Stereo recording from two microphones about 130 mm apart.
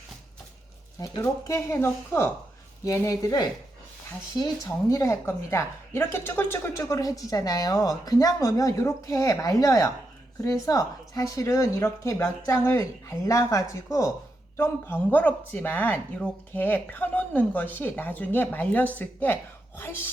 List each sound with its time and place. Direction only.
0.9 s a woman's voice: 25° left (ahead or behind)